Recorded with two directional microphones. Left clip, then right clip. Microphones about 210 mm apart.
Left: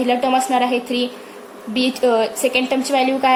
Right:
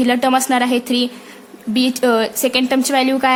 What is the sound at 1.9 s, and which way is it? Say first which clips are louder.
A woman's voice: even; 35° right (ahead or behind).